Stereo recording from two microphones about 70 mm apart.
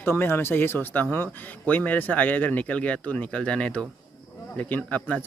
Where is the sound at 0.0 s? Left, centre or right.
Left.